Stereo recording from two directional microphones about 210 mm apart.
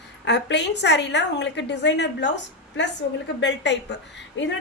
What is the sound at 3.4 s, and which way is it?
A woman's voice, 55° left (ahead or behind).